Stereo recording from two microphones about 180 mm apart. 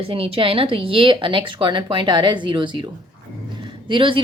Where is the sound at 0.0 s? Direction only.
30° right (ahead or behind).